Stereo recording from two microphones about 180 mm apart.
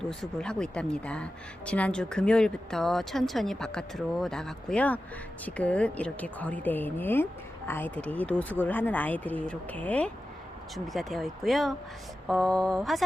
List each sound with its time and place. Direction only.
0.0 s a woman's voice: 5° left (ahead or behind)